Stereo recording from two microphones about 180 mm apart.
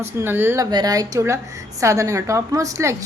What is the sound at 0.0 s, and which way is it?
Speech, 15° right (ahead or behind).